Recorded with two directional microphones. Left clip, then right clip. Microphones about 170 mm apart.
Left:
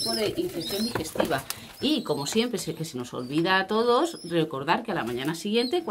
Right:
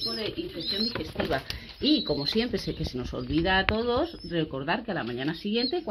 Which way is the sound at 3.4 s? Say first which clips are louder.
Left 3 dB; 30° right (ahead or behind).